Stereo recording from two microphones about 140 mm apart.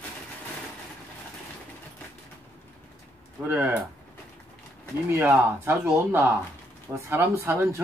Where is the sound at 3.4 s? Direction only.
15° right (ahead or behind).